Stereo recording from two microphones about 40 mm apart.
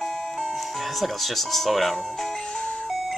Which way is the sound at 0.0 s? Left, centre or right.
Centre.